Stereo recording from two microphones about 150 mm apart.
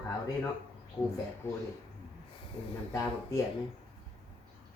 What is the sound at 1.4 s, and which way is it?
Speech, 15° left (ahead or behind).